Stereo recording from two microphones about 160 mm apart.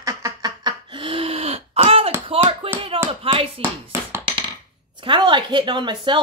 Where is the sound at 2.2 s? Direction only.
35° right (ahead or behind).